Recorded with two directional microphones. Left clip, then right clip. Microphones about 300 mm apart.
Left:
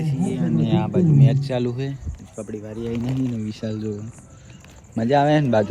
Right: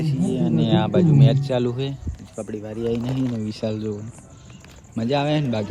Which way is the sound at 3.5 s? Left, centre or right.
Centre.